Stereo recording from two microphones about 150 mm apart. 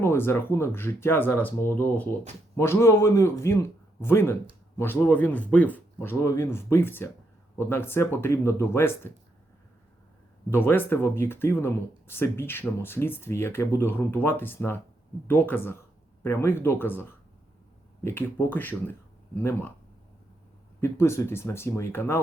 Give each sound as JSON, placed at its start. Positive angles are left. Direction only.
{"t": 0.0, "sound": "speech", "side_deg": 15}
{"t": 10.5, "sound": "speech", "side_deg": 15}
{"t": 20.8, "sound": "speech", "side_deg": 20}